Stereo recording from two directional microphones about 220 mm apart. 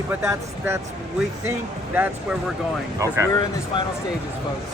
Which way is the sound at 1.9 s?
10° right (ahead or behind).